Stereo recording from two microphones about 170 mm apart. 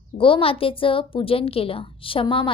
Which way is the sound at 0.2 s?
30° left (ahead or behind).